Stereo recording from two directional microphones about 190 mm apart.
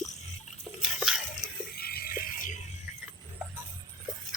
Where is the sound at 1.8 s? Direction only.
55° left (ahead or behind).